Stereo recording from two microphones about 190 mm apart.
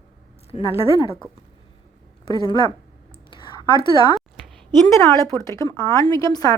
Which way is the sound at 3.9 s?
25° left (ahead or behind).